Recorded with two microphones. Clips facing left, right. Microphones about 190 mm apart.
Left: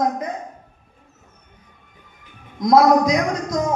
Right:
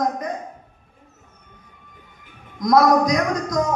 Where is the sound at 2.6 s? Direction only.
25° left (ahead or behind).